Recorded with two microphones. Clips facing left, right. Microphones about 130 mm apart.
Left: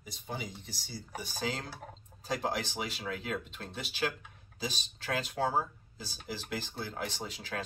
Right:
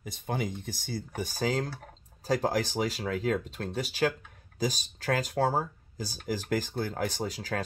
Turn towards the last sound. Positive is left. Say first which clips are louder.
# right 7 dB
turn(degrees=-40)  # may be behind; listen again after turning